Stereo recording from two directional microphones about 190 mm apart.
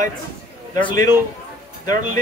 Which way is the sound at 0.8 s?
20° left (ahead or behind).